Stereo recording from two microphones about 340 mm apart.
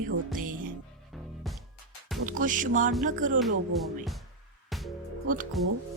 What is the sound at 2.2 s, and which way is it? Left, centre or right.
Music, right.